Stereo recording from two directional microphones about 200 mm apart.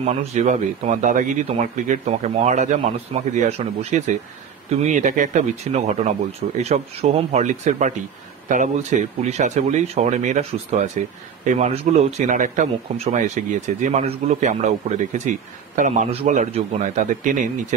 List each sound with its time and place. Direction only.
0.0 s speech: 30° right (ahead or behind)